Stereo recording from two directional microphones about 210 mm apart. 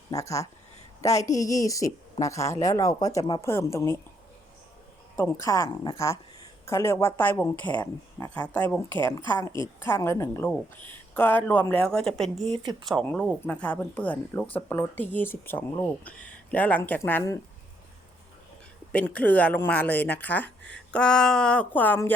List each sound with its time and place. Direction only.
0.1 s speech: 15° left (ahead or behind)
5.1 s speech: 10° left (ahead or behind)
18.9 s speech: 5° left (ahead or behind)